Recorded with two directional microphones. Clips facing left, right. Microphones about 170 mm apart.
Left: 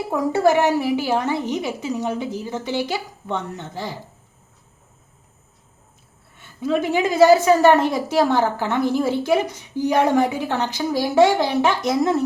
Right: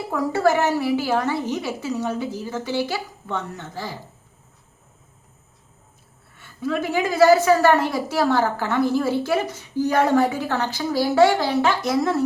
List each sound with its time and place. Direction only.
0.1 s a woman's voice: 20° left (ahead or behind)
6.3 s a woman's voice: 20° left (ahead or behind)